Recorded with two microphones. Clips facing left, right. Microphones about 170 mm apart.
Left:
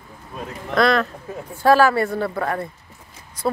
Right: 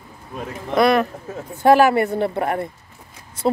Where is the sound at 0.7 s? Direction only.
15° right (ahead or behind).